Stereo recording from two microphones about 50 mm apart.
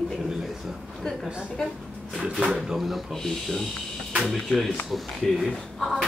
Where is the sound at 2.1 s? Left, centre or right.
Centre.